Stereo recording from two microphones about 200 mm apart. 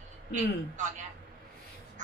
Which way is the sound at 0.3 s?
40° right (ahead or behind).